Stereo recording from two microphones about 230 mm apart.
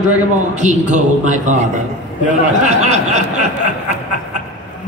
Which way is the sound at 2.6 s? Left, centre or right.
Right.